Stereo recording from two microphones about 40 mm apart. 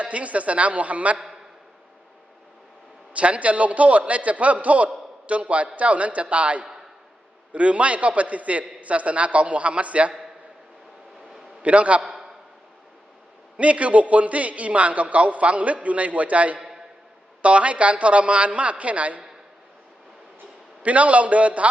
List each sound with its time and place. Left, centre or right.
0.0 s a man's voice: right
3.1 s a man's voice: right
11.6 s a man's voice: right
12.0 s a sound: centre
13.6 s a man's voice: right
16.6 s a sound: centre
17.4 s a man's voice: right
20.8 s a man's voice: right